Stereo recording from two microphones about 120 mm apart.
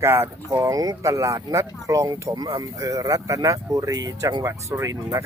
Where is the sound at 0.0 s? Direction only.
25° right (ahead or behind).